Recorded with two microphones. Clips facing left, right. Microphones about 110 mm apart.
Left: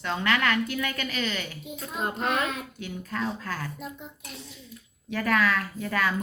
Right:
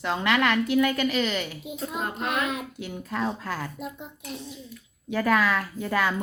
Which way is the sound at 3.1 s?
15° right (ahead or behind).